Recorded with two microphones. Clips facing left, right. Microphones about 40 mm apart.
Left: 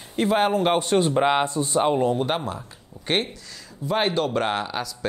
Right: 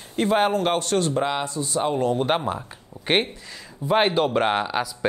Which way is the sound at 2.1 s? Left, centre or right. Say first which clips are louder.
Right 2 dB; centre.